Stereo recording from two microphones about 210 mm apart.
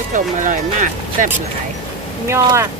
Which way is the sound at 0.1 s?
40° right (ahead or behind).